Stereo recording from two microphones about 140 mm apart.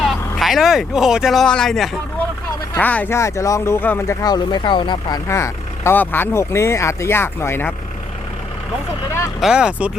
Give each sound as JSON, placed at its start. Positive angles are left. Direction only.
{"t": 0.0, "sound": "speech", "side_deg": 0}
{"t": 9.4, "sound": "speech", "side_deg": -5}